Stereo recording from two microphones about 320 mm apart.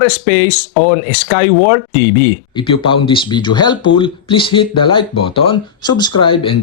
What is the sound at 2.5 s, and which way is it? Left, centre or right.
Speech, centre.